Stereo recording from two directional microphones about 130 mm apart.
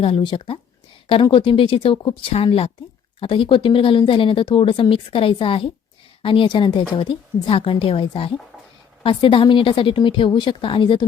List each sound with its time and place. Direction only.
0.0 s a woman's voice: 40° left (ahead or behind)